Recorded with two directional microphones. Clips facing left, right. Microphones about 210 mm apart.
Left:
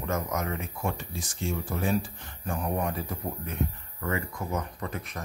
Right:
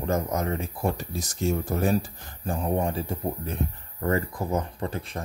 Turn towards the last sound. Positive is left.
turn(degrees=-30)  # may be behind; listen again after turning